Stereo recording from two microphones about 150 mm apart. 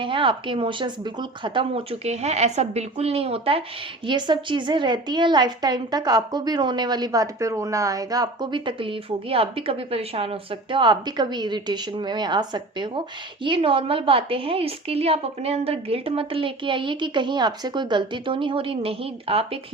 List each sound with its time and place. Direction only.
0.0 s a woman's voice: 35° right (ahead or behind)